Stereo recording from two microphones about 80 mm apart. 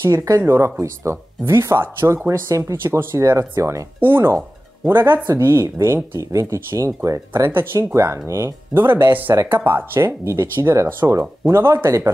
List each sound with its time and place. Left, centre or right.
0.0 s speech: right
9.3 s speech: right